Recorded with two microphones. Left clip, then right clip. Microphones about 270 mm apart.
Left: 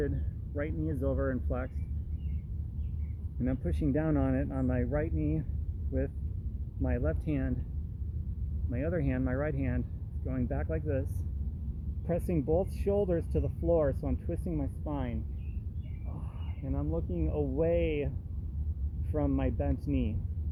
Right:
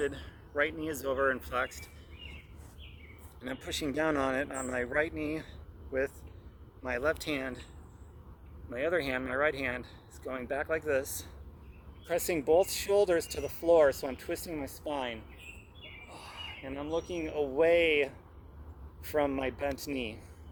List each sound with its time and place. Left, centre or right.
0.0 s speech: centre
3.4 s speech: centre
6.8 s speech: centre
8.7 s speech: centre
16.2 s speech: centre
19.1 s speech: centre